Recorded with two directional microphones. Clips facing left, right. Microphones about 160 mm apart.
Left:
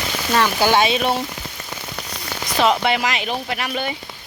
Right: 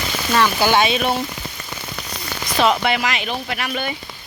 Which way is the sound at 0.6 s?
40° left (ahead or behind).